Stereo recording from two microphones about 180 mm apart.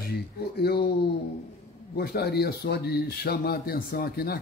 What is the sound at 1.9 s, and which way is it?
Speech, 60° left (ahead or behind).